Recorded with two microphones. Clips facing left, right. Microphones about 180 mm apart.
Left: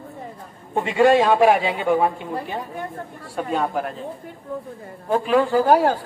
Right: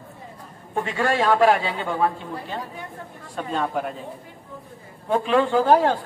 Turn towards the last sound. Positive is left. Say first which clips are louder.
# left 1 dB
turn(degrees=10)  # may be behind; listen again after turning